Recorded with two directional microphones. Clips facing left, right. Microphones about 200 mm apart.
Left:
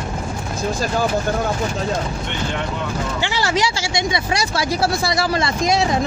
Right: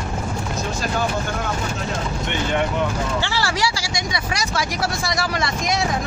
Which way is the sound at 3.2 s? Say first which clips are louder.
Left 5 dB; 20° left (ahead or behind).